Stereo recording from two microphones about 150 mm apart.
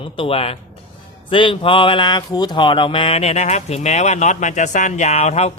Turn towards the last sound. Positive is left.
turn(degrees=45)  # may be behind; listen again after turning